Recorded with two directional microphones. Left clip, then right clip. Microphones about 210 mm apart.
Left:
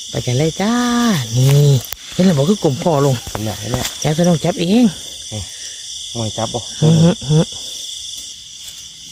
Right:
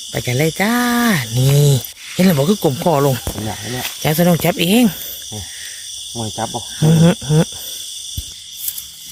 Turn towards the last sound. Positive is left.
turn(degrees=0)  # may be behind; listen again after turning